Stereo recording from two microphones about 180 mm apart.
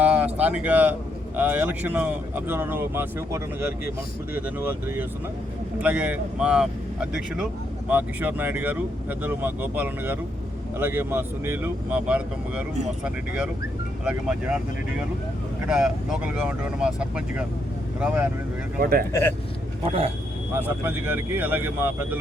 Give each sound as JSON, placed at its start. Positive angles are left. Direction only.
{"t": 0.0, "sound": "a sound", "side_deg": -10}
{"t": 0.3, "sound": "speech", "side_deg": -10}
{"t": 14.0, "sound": "speech", "side_deg": -5}
{"t": 15.6, "sound": "speech", "side_deg": -5}
{"t": 18.8, "sound": "speech", "side_deg": -55}
{"t": 19.8, "sound": "speech", "side_deg": -30}
{"t": 20.6, "sound": "speech", "side_deg": -10}